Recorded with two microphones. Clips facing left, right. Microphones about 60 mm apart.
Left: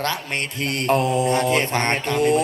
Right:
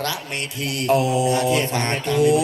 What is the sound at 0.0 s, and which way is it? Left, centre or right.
Speech, left.